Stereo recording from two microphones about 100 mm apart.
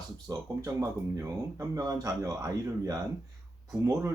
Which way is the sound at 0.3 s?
35° right (ahead or behind).